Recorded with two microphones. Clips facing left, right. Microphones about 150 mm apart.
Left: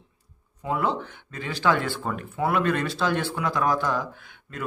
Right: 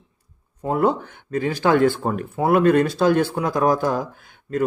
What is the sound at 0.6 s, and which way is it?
A man's voice, 45° right (ahead or behind).